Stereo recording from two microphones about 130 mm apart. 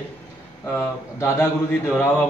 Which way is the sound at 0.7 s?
20° left (ahead or behind).